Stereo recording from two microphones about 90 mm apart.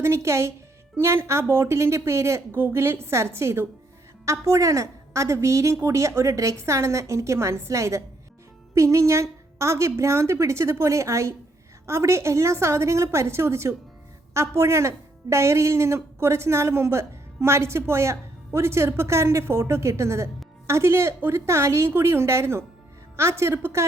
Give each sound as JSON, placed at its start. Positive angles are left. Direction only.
{"t": 0.0, "sound": "a woman's voice", "side_deg": -30}